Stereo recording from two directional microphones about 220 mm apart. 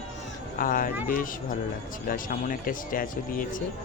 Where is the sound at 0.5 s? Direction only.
40° left (ahead or behind).